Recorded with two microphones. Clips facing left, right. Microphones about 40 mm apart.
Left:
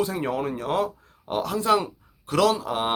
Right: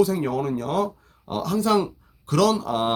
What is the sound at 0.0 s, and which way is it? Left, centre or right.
Speech, left.